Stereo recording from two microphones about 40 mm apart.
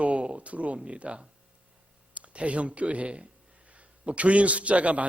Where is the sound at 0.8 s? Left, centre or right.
Right.